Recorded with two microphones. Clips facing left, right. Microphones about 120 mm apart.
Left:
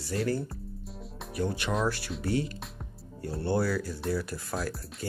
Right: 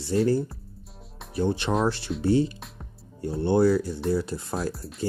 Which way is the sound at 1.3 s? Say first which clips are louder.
Right 5 dB; 30° right (ahead or behind).